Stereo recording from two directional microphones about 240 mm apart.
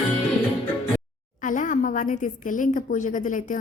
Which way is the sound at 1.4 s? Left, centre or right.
Left.